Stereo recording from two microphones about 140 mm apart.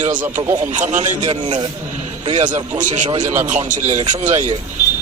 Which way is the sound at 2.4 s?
65° right (ahead or behind).